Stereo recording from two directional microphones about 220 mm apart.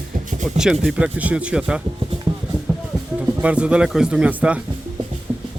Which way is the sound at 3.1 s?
5° right (ahead or behind).